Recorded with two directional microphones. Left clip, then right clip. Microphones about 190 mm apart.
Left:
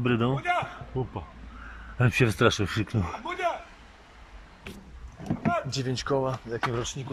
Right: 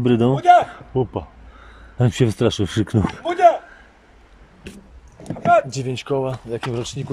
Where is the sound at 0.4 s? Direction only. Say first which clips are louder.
Right 15 dB; 55° right (ahead or behind).